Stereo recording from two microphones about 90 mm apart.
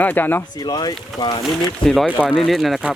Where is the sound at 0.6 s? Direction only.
45° left (ahead or behind).